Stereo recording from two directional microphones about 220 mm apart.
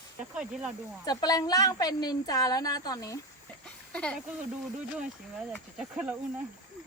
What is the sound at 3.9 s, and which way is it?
Speech, 5° left (ahead or behind).